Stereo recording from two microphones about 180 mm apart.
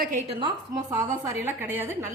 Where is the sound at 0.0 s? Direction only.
45° right (ahead or behind).